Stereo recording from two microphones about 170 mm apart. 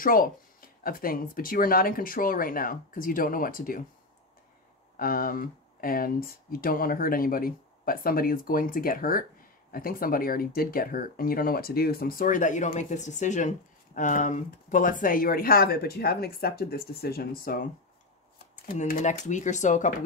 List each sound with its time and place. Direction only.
0.0 s speech: 55° left (ahead or behind)
4.9 s speech: 55° left (ahead or behind)
18.8 s speech: 45° left (ahead or behind)